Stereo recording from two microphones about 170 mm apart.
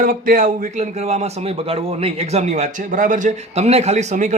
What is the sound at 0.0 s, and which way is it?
Speech, 50° right (ahead or behind).